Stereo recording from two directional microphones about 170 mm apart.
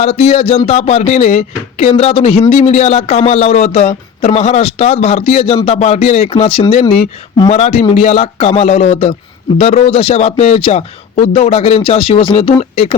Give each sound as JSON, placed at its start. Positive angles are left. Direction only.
{"t": 0.0, "sound": "a man's voice", "side_deg": 35}